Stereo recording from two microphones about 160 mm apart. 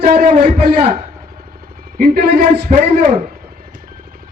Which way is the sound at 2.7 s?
45° right (ahead or behind).